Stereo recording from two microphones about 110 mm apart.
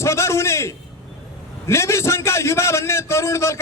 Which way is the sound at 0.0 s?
25° left (ahead or behind).